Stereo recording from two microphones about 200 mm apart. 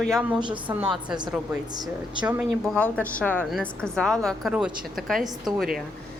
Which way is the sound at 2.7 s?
5° left (ahead or behind).